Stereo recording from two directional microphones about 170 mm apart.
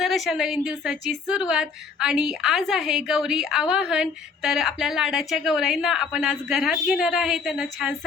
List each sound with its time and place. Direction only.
0.0 s a woman's voice: centre (ahead or behind)